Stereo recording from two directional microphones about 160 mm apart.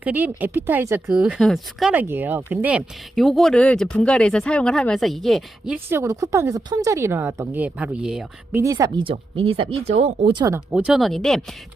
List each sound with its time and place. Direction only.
0.0 s speech: 10° right (ahead or behind)
2.0 s speech: 10° right (ahead or behind)
5.7 s speech: 15° right (ahead or behind)
8.5 s speech: 20° right (ahead or behind)
9.0 s speech: 35° right (ahead or behind)
10.3 s speech: 20° right (ahead or behind)
10.7 s speech: 5° right (ahead or behind)